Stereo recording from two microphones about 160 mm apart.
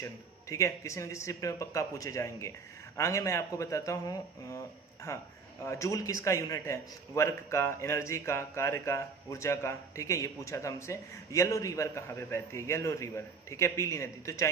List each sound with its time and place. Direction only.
0.0 s a man's voice: 20° left (ahead or behind)